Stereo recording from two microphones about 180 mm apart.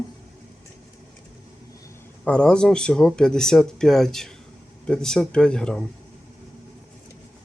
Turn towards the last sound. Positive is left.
turn(degrees=5)  # may be behind; listen again after turning